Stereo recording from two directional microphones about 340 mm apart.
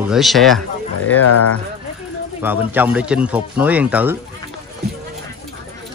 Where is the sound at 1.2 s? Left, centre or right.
Left.